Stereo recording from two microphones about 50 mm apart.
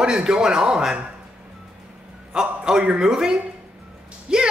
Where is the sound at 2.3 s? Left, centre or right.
Centre.